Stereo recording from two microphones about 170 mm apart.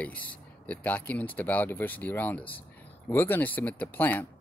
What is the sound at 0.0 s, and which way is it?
Speech, 10° left (ahead or behind).